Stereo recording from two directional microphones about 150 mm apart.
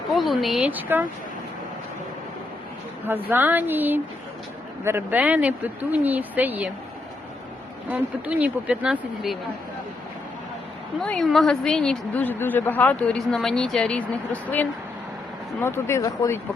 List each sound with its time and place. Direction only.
0.1 s a woman's voice: centre (ahead or behind)
3.1 s speech: 15° right (ahead or behind)
7.9 s speech: 10° right (ahead or behind)
11.0 s a woman's voice: 5° left (ahead or behind); by 16.4 s 20° left (ahead or behind)